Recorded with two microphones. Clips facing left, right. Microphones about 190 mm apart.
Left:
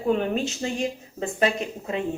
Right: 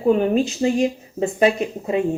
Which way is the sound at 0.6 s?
20° right (ahead or behind).